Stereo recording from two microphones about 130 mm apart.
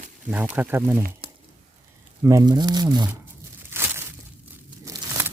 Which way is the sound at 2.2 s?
25° right (ahead or behind).